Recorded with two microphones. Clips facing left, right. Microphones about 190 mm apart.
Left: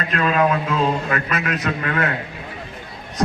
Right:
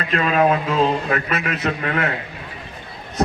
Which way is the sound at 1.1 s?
30° right (ahead or behind).